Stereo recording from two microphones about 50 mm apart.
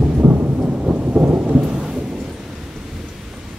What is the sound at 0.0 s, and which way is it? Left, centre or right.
Thunder, right.